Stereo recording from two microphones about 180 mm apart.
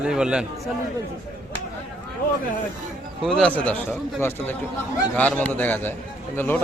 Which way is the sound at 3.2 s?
5° left (ahead or behind).